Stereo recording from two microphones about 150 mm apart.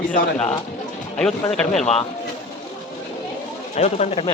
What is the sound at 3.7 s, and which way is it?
Speech, 50° left (ahead or behind).